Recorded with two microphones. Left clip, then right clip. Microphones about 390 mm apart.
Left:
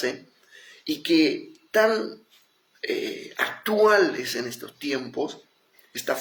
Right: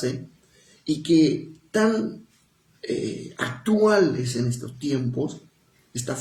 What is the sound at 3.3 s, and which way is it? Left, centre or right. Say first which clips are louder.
Speech: left 2 dB; right.